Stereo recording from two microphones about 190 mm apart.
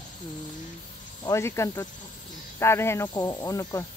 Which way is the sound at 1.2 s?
15° left (ahead or behind).